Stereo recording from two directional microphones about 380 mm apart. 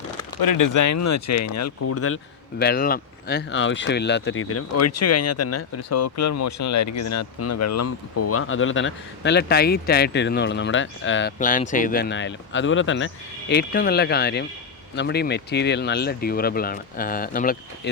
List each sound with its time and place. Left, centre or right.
0.3 s speech: left
2.6 s speech: left